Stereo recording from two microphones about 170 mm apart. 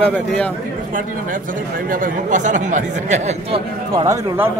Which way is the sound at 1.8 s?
55° right (ahead or behind).